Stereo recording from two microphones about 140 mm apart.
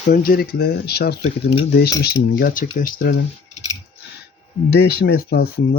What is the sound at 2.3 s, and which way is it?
Speech, 85° left.